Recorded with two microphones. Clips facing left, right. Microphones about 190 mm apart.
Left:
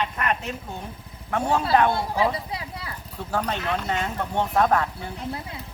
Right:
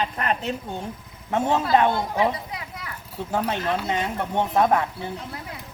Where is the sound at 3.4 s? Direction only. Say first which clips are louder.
Right 2 dB; 10° right (ahead or behind).